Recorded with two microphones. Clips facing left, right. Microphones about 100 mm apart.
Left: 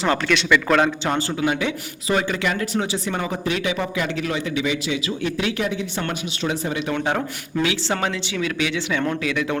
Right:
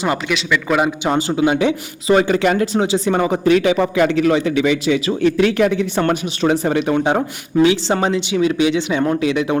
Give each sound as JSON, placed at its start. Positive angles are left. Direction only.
{"t": 0.0, "sound": "a man's voice", "side_deg": -15}
{"t": 2.1, "sound": "speech", "side_deg": -40}
{"t": 3.4, "sound": "a man's voice", "side_deg": -45}
{"t": 5.6, "sound": "speech", "side_deg": -65}
{"t": 6.0, "sound": "a man's voice", "side_deg": -45}
{"t": 6.9, "sound": "speech", "side_deg": -20}